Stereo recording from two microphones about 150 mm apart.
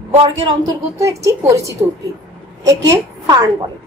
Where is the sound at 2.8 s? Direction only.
25° right (ahead or behind).